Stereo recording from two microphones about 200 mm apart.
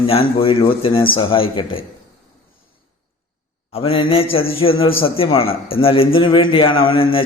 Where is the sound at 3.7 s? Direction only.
30° left (ahead or behind).